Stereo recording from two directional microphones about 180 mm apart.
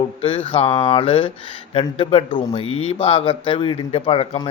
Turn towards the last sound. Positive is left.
turn(degrees=30)  # may be behind; listen again after turning